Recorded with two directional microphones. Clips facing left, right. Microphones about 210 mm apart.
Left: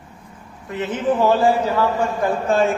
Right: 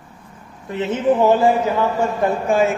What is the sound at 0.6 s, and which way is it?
A man's voice, 25° right (ahead or behind).